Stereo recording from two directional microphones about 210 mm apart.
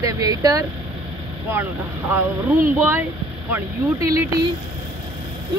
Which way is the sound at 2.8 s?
10° right (ahead or behind).